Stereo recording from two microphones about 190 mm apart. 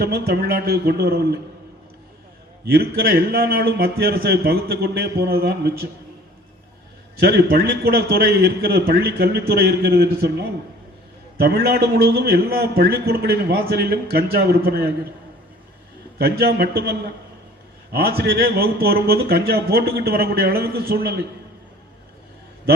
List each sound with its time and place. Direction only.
0.0 s a man's voice: 55° right (ahead or behind)
2.6 s a man's voice: 55° right (ahead or behind)
7.2 s a man's voice: 55° right (ahead or behind)
16.1 s a man's voice: 55° right (ahead or behind)